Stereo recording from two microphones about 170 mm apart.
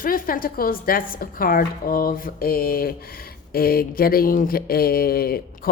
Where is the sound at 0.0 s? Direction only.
55° left (ahead or behind).